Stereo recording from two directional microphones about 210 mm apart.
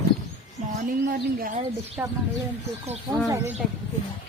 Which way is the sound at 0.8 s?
40° right (ahead or behind).